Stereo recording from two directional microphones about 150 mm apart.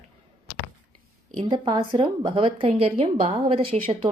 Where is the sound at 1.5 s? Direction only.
30° right (ahead or behind).